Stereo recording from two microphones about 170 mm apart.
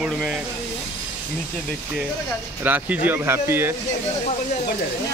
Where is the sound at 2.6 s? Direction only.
10° right (ahead or behind).